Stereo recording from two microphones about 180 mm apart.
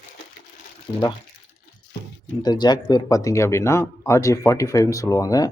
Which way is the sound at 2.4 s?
20° left (ahead or behind).